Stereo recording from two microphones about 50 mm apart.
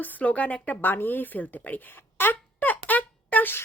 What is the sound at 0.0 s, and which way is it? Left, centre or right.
Speech, left.